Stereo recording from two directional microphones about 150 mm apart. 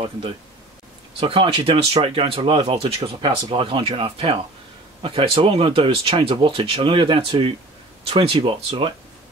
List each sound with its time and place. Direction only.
1.2 s speech: 35° right (ahead or behind)